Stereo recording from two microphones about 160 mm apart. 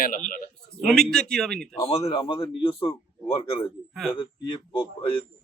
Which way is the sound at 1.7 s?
35° left (ahead or behind).